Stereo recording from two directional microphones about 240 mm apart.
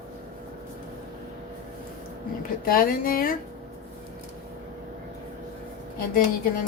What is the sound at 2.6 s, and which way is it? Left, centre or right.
Speech, left.